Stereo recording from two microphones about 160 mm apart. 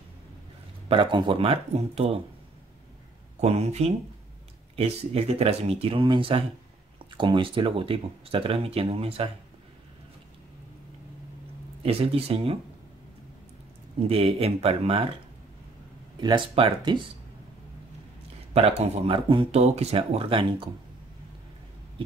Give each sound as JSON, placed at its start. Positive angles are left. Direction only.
{"t": 0.8, "sound": "speech", "side_deg": -30}
{"t": 3.3, "sound": "speech", "side_deg": -40}
{"t": 11.8, "sound": "speech", "side_deg": -35}
{"t": 13.9, "sound": "speech", "side_deg": -40}
{"t": 16.2, "sound": "speech", "side_deg": -30}
{"t": 18.5, "sound": "speech", "side_deg": -40}